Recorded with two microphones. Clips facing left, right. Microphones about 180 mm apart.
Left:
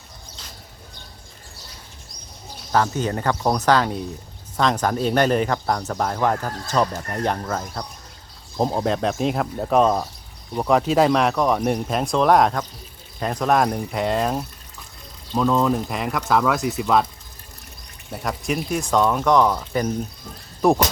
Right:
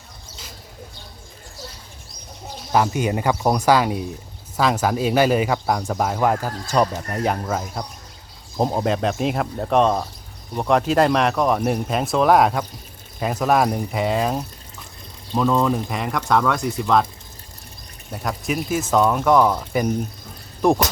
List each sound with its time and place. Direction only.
2.7 s speech: 10° right (ahead or behind); by 17.1 s 5° left (ahead or behind)
18.1 s speech: centre (ahead or behind)
20.6 s speech: centre (ahead or behind)